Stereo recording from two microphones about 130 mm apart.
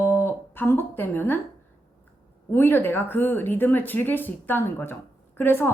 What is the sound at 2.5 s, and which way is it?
A woman's voice, 15° left (ahead or behind).